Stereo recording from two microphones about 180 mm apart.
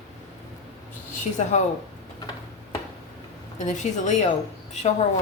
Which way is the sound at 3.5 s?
45° left (ahead or behind).